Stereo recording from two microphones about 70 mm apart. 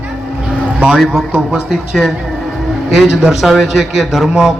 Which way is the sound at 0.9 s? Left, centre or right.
Centre.